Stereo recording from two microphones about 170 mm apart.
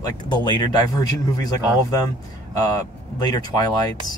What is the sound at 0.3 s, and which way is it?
Speech, 25° left (ahead or behind).